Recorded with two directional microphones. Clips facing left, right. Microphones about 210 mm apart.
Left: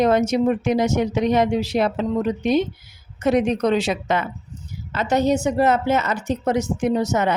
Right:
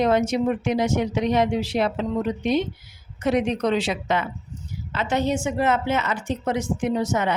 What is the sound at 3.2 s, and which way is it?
A woman's voice, 45° left (ahead or behind).